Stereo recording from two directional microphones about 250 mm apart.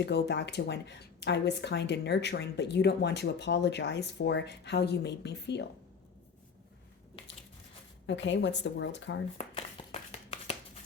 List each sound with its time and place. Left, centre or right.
0.0 s speech: left
8.0 s speech: left
9.4 s a sound: left